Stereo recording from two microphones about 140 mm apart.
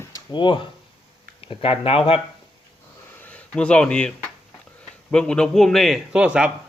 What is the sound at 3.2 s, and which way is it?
A man's voice, 10° left (ahead or behind).